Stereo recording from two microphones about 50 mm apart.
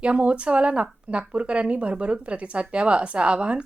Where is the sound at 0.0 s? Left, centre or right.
Right.